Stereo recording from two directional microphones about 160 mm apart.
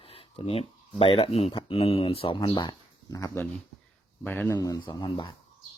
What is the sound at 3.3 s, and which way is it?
Speech, 10° left (ahead or behind).